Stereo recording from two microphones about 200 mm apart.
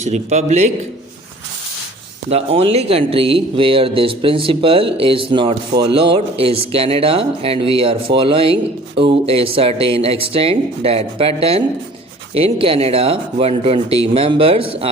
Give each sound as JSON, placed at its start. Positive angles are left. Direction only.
{"t": 0.0, "sound": "a man's voice", "side_deg": -35}
{"t": 2.3, "sound": "speech", "side_deg": -30}